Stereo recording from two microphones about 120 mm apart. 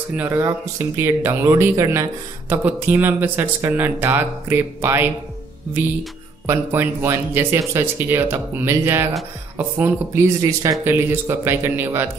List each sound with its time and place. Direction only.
0.1 s speech: 15° right (ahead or behind)
6.4 s speech: 20° right (ahead or behind)